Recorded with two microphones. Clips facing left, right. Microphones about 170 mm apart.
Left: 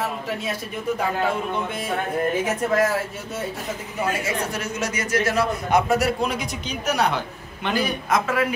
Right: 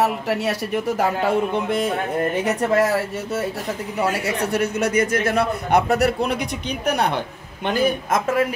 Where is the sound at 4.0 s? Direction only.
70° right (ahead or behind).